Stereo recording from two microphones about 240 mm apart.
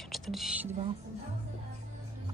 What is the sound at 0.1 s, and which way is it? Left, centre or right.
Whispering, centre.